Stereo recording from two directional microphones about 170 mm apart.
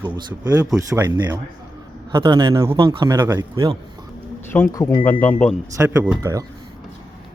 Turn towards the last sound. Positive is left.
turn(degrees=-15)  # may be behind; listen again after turning